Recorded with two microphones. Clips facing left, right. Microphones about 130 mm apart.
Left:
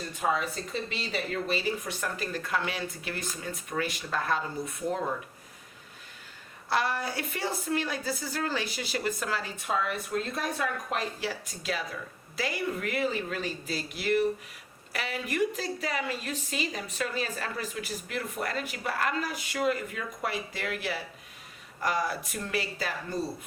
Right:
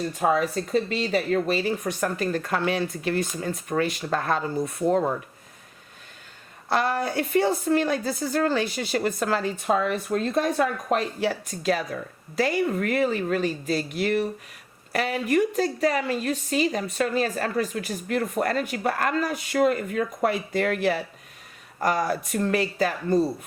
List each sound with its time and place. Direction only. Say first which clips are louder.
0.2 s speech: right 6 dB; 50° right (ahead or behind)
6.7 s speech: right 5 dB; 50° right (ahead or behind)